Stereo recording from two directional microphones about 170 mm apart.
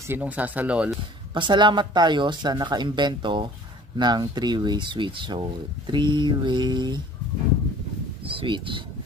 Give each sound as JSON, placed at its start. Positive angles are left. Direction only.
{"t": 0.1, "sound": "speech", "side_deg": -10}
{"t": 1.3, "sound": "speech", "side_deg": -30}
{"t": 8.3, "sound": "speech", "side_deg": -30}